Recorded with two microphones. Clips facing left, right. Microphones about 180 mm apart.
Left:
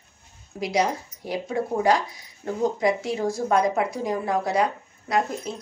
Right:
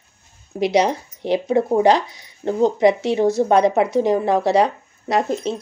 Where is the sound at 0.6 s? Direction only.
75° right (ahead or behind).